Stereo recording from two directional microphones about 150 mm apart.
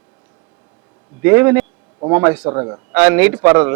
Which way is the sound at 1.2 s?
15° right (ahead or behind).